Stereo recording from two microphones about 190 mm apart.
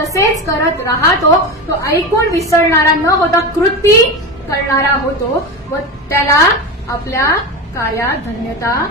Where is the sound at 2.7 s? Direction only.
15° left (ahead or behind).